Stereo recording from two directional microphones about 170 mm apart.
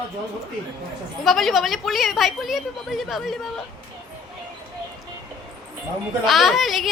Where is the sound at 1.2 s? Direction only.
Centre (ahead or behind).